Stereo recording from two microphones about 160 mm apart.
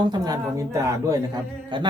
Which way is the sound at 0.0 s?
25° right (ahead or behind).